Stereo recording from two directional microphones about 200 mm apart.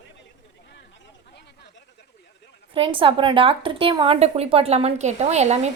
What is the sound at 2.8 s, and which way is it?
Speech, 25° right (ahead or behind).